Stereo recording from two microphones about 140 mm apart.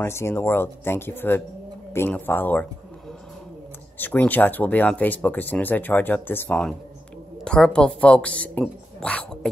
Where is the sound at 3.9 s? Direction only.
15° left (ahead or behind).